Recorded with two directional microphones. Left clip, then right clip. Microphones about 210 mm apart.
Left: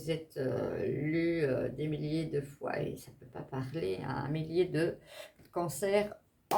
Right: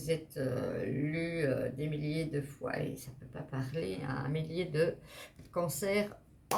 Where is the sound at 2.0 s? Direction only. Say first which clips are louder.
Left 1 dB; 30° left (ahead or behind).